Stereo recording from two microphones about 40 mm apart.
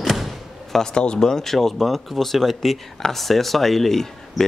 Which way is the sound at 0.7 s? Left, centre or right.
Centre.